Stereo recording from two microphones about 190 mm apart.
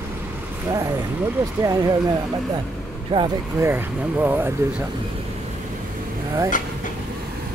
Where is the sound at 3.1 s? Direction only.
25° right (ahead or behind).